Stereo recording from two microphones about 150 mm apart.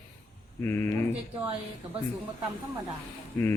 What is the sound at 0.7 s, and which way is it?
Speech, 15° left (ahead or behind).